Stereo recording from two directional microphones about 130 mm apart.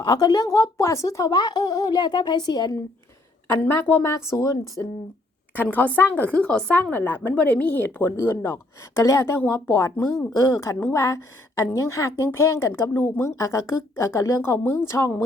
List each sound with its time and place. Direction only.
0.0 s speech: 30° left (ahead or behind)
3.6 s a woman's voice: 15° left (ahead or behind)
5.5 s a woman's voice: 10° left (ahead or behind)